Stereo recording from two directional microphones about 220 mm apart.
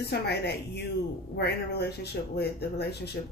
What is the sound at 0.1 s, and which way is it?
Speech, 50° left (ahead or behind).